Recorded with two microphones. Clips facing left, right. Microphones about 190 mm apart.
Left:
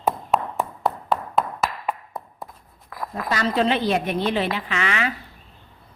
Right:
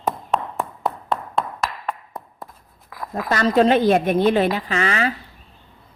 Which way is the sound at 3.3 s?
45° right (ahead or behind).